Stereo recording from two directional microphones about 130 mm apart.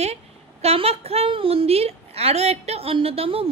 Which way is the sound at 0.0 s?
55° right (ahead or behind).